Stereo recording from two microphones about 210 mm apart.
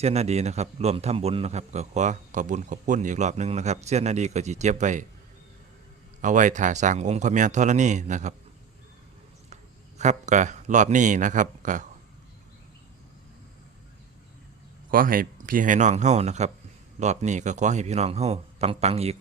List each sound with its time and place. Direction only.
0.0 s a man's voice: 30° right (ahead or behind)
6.2 s a man's voice: 35° right (ahead or behind)
10.0 s a man's voice: 35° right (ahead or behind)
14.8 s a man's voice: 45° right (ahead or behind)